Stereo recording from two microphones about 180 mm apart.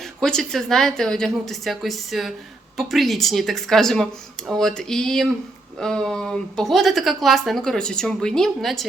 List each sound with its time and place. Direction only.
0.0 s speech: 5° left (ahead or behind)